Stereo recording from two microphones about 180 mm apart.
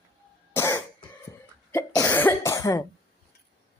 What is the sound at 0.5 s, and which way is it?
Cough, 15° left (ahead or behind).